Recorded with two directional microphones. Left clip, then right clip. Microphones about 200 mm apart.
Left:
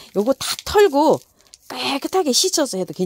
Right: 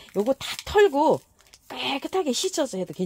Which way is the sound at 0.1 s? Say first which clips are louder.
Left 5 dB; 50° left (ahead or behind).